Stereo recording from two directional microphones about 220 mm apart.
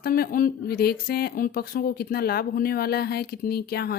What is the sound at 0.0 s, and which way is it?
Speech, 40° left (ahead or behind).